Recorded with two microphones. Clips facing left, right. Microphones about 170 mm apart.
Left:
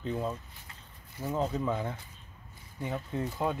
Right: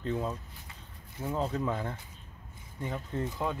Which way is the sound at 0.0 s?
5° left (ahead or behind).